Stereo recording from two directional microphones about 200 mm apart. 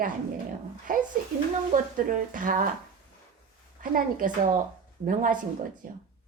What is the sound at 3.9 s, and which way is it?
A woman's voice, 45° right (ahead or behind).